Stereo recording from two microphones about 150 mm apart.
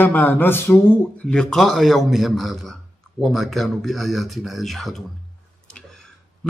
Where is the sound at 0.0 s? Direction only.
10° left (ahead or behind).